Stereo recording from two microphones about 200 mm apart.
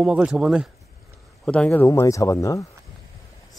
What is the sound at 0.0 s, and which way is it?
Speech, 5° right (ahead or behind).